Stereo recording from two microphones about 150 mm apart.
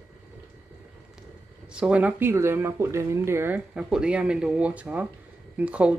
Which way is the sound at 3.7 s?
5° right (ahead or behind).